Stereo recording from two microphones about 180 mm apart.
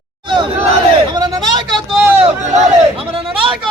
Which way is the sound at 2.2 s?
35° right (ahead or behind).